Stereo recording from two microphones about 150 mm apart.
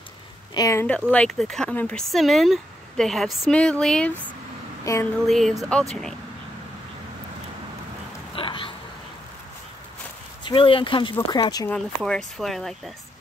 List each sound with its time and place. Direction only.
0.6 s speech: 20° left (ahead or behind)
1.1 s speech: 5° left (ahead or behind)
4.9 s speech: 20° left (ahead or behind)
5.2 s speech: centre (ahead or behind)
8.4 s a sound: 35° left (ahead or behind)
10.4 s speech: 35° left (ahead or behind)
11.7 s speech: 5° left (ahead or behind)